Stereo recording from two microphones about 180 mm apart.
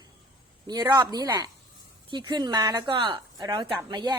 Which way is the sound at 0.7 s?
20° right (ahead or behind).